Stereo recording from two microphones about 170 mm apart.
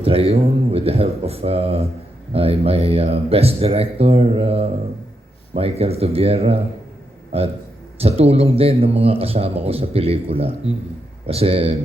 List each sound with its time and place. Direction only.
0.0 s speech: 35° right (ahead or behind)